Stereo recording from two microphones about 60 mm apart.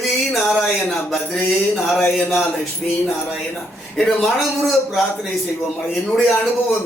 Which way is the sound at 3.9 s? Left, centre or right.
Centre.